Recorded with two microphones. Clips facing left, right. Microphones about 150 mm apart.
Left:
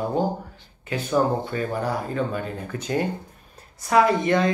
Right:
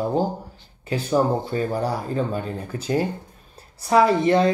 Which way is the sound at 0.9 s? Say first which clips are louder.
Right 1 dB; 35° right (ahead or behind).